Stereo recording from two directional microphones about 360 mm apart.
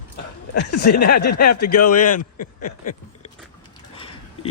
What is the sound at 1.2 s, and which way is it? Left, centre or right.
Speech, left.